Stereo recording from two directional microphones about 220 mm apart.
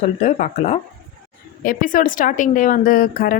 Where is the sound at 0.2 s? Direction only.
35° left (ahead or behind).